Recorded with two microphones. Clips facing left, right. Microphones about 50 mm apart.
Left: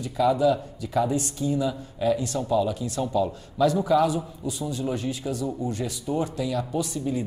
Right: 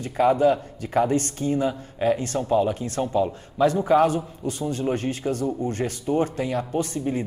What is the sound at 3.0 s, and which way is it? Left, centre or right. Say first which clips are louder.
A man's voice: right 2 dB; right.